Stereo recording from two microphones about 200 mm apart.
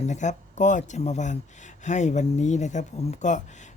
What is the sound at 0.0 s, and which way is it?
Speech, 35° left (ahead or behind).